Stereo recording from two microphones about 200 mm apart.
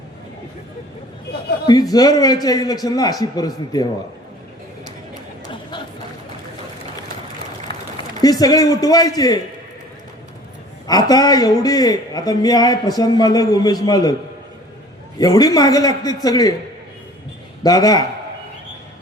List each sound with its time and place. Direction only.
1.6 s a man's voice: 20° left (ahead or behind)
8.2 s a man's voice: 20° left (ahead or behind)
10.8 s a man's voice: 20° left (ahead or behind)
15.2 s a man's voice: 20° left (ahead or behind)
17.6 s a man's voice: 20° left (ahead or behind)